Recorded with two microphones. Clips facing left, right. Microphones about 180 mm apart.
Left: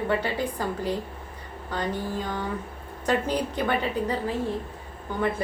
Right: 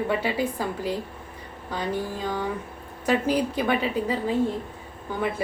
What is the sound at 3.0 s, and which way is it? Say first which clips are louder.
A woman's voice: right 2 dB; 10° right (ahead or behind).